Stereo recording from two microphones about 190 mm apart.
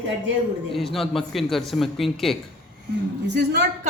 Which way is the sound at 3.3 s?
60° right (ahead or behind).